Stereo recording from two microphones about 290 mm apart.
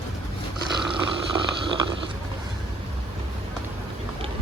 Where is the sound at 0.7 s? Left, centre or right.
Centre.